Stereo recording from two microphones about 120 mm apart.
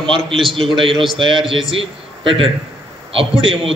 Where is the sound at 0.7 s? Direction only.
45° right (ahead or behind).